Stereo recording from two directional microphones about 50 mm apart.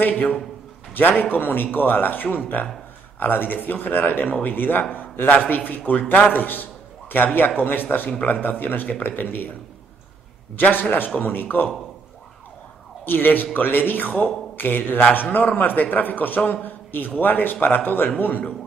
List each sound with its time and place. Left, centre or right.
0.0 s a man's voice: left
6.3 s a sound: left
7.3 s a man's voice: left
10.5 s a man's voice: left
13.0 s a man's voice: left